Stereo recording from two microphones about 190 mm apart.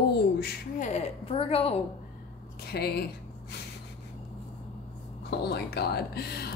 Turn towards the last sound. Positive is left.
turn(degrees=55)  # may be behind; listen again after turning